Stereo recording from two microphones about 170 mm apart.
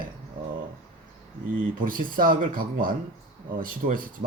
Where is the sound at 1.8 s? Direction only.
55° right (ahead or behind).